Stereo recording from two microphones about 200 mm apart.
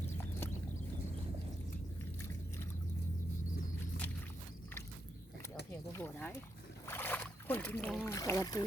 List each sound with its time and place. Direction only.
5.7 s a sound: 10° left (ahead or behind)
6.8 s boat: 10° left (ahead or behind)
8.1 s speech: 15° left (ahead or behind)